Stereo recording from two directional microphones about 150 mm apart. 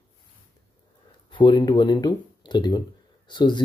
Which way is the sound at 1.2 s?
30° left (ahead or behind).